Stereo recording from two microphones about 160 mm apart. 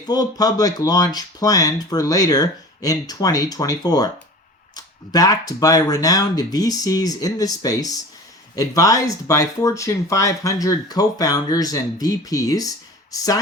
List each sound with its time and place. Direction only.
0.0 s speech: 25° left (ahead or behind)